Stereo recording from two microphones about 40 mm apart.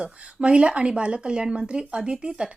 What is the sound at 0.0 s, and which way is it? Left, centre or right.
A woman's voice, right.